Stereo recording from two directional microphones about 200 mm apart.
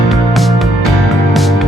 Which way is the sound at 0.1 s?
Centre (ahead or behind).